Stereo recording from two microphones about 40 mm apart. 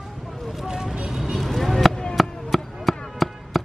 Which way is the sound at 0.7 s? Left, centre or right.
Centre.